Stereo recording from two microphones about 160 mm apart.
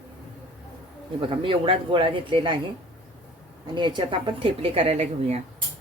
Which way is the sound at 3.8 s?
30° right (ahead or behind).